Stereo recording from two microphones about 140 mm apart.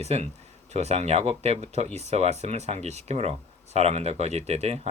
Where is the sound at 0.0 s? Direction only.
50° right (ahead or behind).